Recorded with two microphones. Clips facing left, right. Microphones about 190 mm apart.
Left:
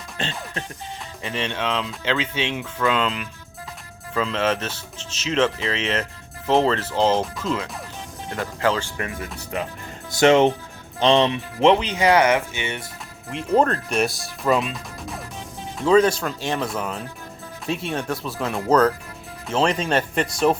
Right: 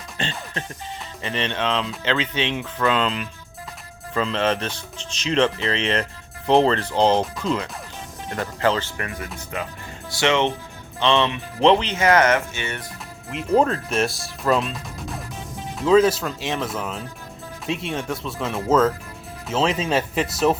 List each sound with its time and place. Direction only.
0.2 s speech: centre (ahead or behind)
10.2 s speech: 40° left (ahead or behind)
11.6 s speech: 10° left (ahead or behind)
13.3 s speech: centre (ahead or behind)